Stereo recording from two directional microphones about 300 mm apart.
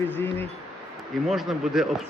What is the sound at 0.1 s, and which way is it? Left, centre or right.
Speech, centre.